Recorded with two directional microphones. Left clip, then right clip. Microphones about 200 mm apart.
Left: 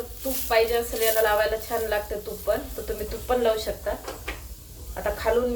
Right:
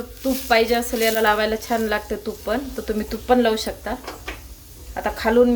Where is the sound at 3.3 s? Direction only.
50° right (ahead or behind).